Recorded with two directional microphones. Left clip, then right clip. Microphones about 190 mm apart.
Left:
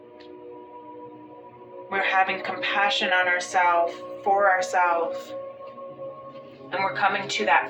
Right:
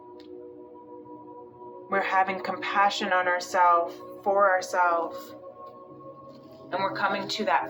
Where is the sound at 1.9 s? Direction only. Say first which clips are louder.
Left 2 dB; 25° right (ahead or behind).